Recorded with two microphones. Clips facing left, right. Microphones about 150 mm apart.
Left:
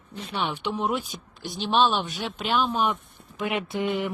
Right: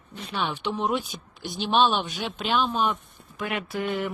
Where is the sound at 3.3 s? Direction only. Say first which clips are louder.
Left 2 dB; 20° left (ahead or behind).